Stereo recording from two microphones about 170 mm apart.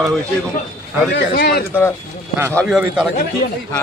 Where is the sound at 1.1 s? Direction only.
70° left (ahead or behind).